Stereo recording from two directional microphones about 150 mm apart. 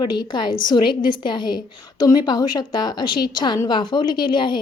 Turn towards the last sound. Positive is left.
turn(degrees=30)  # may be behind; listen again after turning